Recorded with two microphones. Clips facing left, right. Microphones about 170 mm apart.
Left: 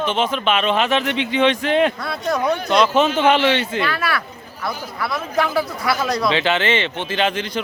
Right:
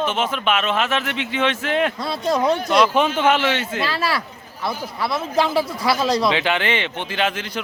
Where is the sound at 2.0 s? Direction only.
30° right (ahead or behind).